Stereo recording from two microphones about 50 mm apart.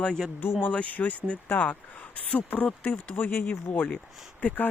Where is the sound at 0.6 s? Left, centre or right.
Left.